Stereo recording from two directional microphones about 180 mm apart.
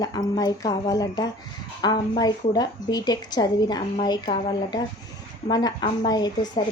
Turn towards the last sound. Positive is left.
turn(degrees=20)  # may be behind; listen again after turning